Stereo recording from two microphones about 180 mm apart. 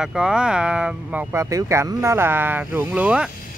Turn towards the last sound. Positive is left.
turn(degrees=-5)  # may be behind; listen again after turning